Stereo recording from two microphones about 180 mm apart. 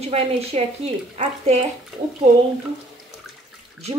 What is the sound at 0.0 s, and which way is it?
A woman's voice, 35° right (ahead or behind).